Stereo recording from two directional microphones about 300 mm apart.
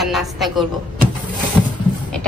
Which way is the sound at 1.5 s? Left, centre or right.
Centre.